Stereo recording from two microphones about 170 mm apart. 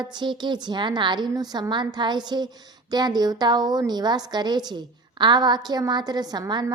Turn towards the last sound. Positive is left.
turn(degrees=-25)  # may be behind; listen again after turning